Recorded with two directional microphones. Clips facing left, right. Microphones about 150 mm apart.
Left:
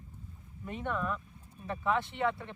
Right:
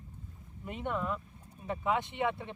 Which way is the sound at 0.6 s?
15° right (ahead or behind).